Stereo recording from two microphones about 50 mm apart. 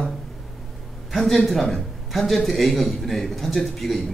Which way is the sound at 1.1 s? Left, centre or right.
Centre.